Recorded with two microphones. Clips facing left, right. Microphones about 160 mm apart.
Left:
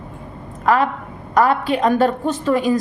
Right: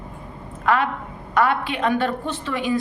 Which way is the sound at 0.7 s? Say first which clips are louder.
Left 4 dB; 40° left (ahead or behind).